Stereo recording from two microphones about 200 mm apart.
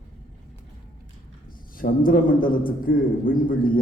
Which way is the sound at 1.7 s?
45° left (ahead or behind).